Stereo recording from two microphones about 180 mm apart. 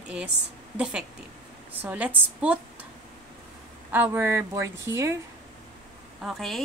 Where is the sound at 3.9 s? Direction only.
10° right (ahead or behind).